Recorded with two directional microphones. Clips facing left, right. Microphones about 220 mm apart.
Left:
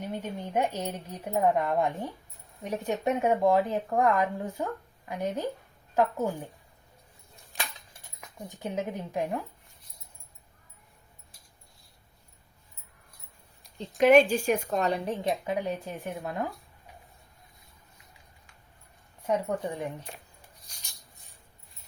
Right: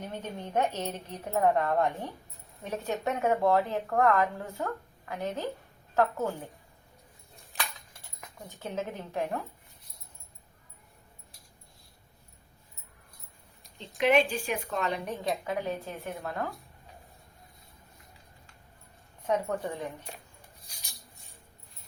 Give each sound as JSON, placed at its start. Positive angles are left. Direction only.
{"t": 0.0, "sound": "a woman's voice", "side_deg": 10}
{"t": 8.4, "sound": "speech", "side_deg": 15}
{"t": 14.0, "sound": "a woman's voice", "side_deg": 45}
{"t": 19.2, "sound": "speech", "side_deg": 10}